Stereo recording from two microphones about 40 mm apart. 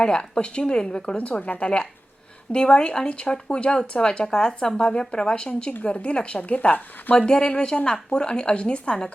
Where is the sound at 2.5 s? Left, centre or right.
Left.